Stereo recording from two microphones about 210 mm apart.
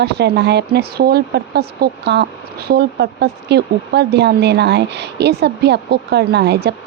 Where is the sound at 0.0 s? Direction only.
55° right (ahead or behind).